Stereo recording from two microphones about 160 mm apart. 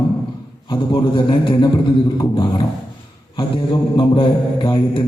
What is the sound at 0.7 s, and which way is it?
Mantra, 30° left (ahead or behind).